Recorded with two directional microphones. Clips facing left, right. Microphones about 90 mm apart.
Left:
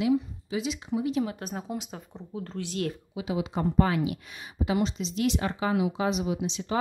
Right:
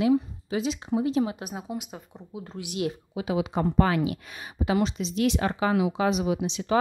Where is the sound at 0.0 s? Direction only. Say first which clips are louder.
Right 3 dB; 40° right (ahead or behind).